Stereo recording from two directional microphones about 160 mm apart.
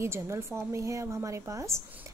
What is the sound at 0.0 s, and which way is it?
A woman's voice, 15° right (ahead or behind).